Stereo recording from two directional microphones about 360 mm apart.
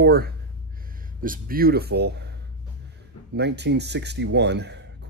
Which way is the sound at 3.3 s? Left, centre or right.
Right.